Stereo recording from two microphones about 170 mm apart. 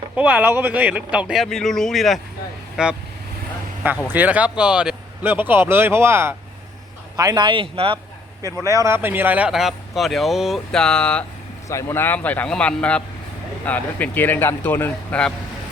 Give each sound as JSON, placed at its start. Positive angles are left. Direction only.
{"t": 0.2, "sound": "speech", "side_deg": -10}
{"t": 4.1, "sound": "speech", "side_deg": -10}
{"t": 8.4, "sound": "speech", "side_deg": -20}